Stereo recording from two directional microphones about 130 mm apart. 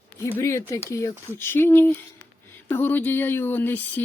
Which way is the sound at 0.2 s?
20° left (ahead or behind).